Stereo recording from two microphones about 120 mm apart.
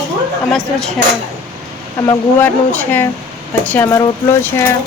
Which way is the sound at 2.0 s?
15° left (ahead or behind).